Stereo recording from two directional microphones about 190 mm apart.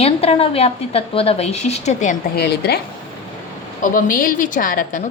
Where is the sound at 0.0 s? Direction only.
30° left (ahead or behind).